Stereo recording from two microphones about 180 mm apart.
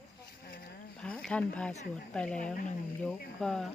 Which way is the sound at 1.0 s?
5° left (ahead or behind).